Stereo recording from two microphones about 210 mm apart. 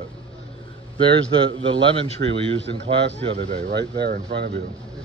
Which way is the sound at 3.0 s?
55° right (ahead or behind).